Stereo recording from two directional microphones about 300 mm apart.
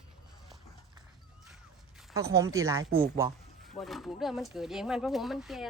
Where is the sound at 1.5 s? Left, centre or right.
Centre.